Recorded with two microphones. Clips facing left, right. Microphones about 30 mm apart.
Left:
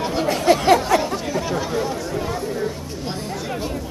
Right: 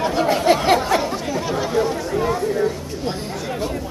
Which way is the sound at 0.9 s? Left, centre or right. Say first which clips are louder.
Even; centre.